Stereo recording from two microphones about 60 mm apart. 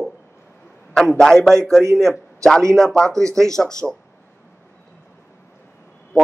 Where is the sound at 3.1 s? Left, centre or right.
Right.